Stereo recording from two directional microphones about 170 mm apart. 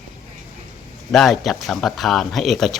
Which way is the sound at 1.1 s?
Centre (ahead or behind).